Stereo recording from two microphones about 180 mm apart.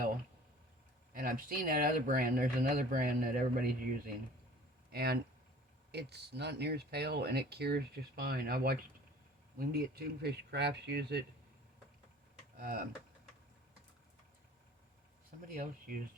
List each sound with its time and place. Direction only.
1.1 s speech: 50° right (ahead or behind)
12.5 s speech: 55° right (ahead or behind)